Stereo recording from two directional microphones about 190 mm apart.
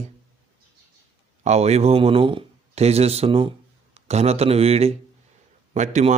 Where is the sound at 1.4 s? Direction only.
35° right (ahead or behind).